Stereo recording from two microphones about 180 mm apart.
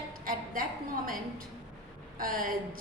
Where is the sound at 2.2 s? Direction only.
50° right (ahead or behind).